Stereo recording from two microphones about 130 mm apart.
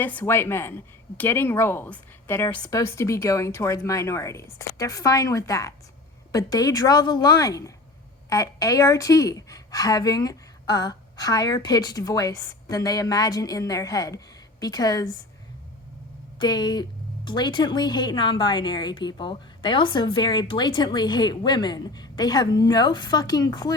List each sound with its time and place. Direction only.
0.0 s a woman's voice: 15° left (ahead or behind); by 15.0 s 30° left (ahead or behind)
16.4 s a woman's voice: 35° left (ahead or behind)